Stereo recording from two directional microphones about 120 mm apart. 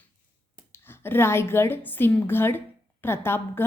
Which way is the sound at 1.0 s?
20° left (ahead or behind).